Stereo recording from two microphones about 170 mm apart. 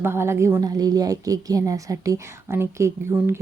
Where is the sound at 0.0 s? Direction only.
15° right (ahead or behind).